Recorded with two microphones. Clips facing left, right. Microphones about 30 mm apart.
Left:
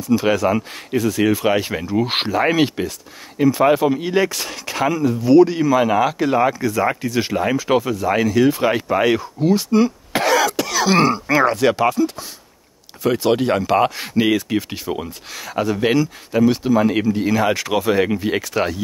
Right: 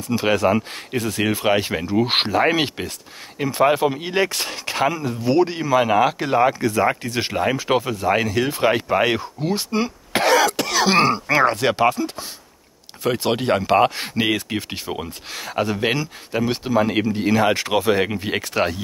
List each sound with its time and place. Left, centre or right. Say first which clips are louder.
0.0 s speech: left 2 dB; right
2.0 s speech: right 1 dB; centre
2.5 s speech: left 4 dB; right
4.0 s speech: left 2 dB; right
5.6 s speech: left 1 dB; right
6.2 s speech: left 1 dB; centre
6.6 s speech: even; right
7.7 s speech: left 3 dB; centre
8.1 s speech: left 4 dB; right
10.5 s speech: left 1 dB; right